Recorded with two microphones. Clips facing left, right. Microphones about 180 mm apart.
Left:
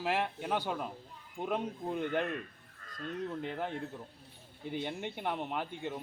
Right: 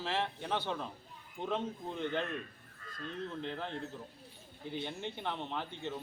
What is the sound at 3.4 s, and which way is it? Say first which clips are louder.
Speech: left 2 dB; 10° left (ahead or behind).